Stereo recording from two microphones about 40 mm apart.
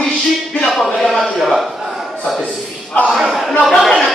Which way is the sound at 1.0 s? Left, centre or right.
Centre.